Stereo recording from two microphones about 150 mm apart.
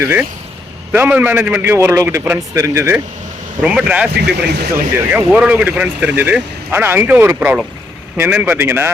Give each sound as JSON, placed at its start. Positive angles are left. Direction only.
{"t": 0.0, "sound": "speech", "side_deg": -15}
{"t": 4.4, "sound": "speech", "side_deg": -90}
{"t": 5.1, "sound": "speech", "side_deg": -10}